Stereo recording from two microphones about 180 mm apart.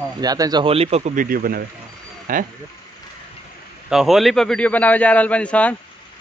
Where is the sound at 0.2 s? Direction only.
20° right (ahead or behind); by 2.4 s 50° right (ahead or behind).